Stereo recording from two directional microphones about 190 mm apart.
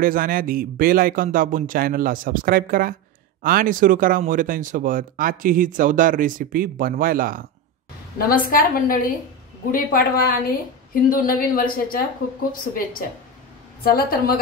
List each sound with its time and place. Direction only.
0.0 s speech: 50° right (ahead or behind)
8.2 s a woman's voice: 50° left (ahead or behind)
13.8 s a woman's voice: 50° left (ahead or behind)